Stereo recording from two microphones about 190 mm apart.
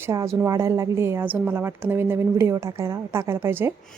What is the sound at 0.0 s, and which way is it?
A woman's voice, 15° right (ahead or behind).